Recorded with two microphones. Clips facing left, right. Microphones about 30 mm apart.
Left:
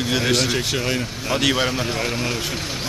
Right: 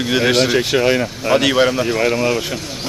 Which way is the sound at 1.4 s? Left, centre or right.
Centre.